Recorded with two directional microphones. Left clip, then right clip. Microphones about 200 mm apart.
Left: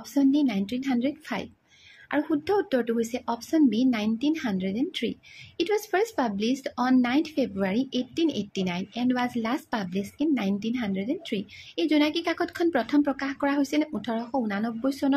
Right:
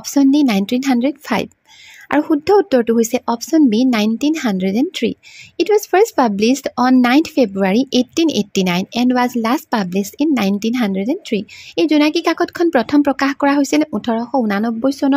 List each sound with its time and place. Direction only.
0.0 s a woman's voice: 45° right (ahead or behind)